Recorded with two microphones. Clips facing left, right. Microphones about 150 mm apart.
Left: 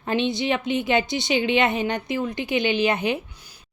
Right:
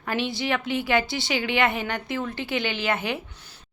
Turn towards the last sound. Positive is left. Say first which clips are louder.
# left 5 dB
turn(degrees=20)  # may be behind; listen again after turning